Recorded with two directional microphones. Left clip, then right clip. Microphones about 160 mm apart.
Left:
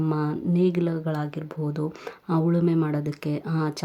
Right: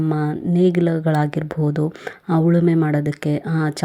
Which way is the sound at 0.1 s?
20° right (ahead or behind).